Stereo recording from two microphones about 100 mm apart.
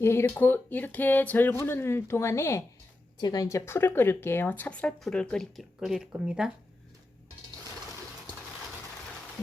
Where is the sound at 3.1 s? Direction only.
40° left (ahead or behind); by 6.5 s 5° right (ahead or behind).